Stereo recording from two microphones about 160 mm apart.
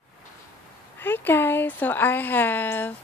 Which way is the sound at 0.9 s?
15° left (ahead or behind).